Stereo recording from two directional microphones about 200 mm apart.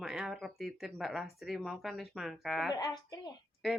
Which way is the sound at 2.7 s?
20° left (ahead or behind).